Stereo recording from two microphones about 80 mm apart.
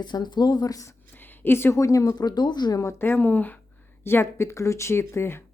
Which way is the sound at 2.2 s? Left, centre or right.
Left.